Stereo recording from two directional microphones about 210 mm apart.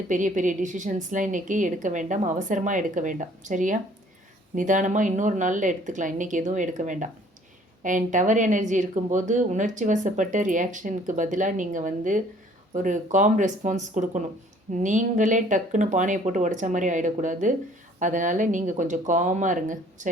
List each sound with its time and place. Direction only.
0.1 s speech: 35° right (ahead or behind)